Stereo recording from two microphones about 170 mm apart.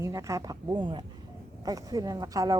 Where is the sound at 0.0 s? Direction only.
20° right (ahead or behind).